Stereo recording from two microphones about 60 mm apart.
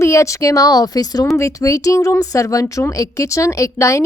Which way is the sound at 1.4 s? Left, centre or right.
Left.